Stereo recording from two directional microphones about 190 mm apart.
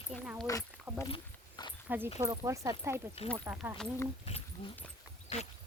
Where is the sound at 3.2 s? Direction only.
30° left (ahead or behind).